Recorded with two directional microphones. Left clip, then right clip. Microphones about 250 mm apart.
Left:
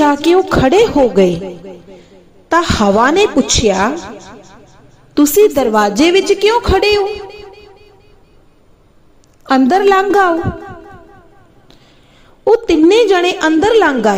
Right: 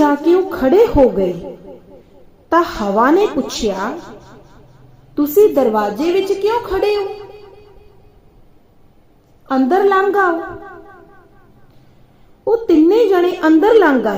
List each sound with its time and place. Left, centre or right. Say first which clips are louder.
0.0 s a woman's voice: left 3 dB; left
2.5 s a woman's voice: left 3 dB; left
5.1 s a woman's voice: left 2 dB; left
9.5 s a woman's voice: left 3 dB; left
12.5 s a woman's voice: left 3 dB; left